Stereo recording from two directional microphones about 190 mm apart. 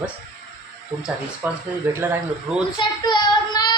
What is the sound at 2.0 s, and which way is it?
Speech, 10° right (ahead or behind).